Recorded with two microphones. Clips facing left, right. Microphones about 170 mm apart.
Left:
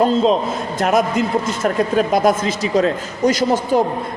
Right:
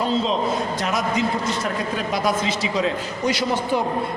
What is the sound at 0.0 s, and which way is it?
A man's voice, 45° left (ahead or behind).